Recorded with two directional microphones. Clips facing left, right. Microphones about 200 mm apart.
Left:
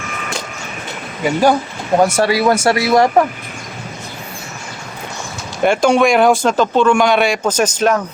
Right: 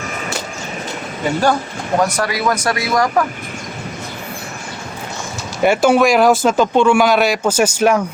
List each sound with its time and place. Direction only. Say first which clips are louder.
1.2 s speech: left 3 dB; 15° left (ahead or behind)
2.0 s speech: left 5 dB; 25° left (ahead or behind)
5.6 s speech: even; 5° right (ahead or behind)